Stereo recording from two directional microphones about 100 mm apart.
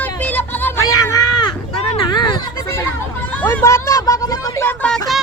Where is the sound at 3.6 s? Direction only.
30° left (ahead or behind).